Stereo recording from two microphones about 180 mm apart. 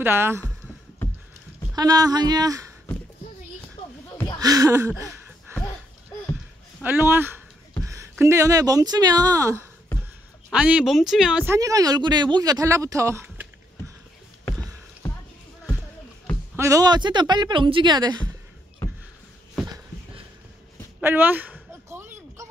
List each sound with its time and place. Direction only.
0.0 s speech: 15° right (ahead or behind)
1.8 s speech: 20° right (ahead or behind)
4.4 s speech: 20° right (ahead or behind)
5.0 s a sound: 5° left (ahead or behind)
6.8 s speech: 10° right (ahead or behind)
10.5 s speech: 5° right (ahead or behind)
11.5 s speech: 20° right (ahead or behind)
16.5 s speech: 15° right (ahead or behind)
21.0 s a sound: 10° right (ahead or behind)